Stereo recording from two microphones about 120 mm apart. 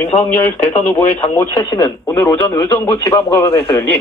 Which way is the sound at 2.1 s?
20° left (ahead or behind).